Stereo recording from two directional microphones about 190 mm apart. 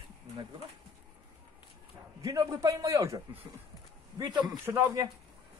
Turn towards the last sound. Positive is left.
turn(degrees=-15)  # may be behind; listen again after turning